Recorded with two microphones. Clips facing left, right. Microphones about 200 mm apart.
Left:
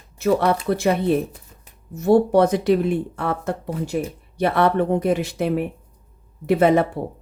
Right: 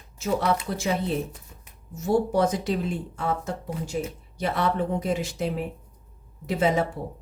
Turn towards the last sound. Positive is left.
turn(degrees=60)  # may be behind; listen again after turning